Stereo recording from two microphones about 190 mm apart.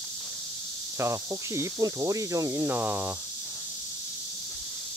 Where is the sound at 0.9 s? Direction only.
15° right (ahead or behind).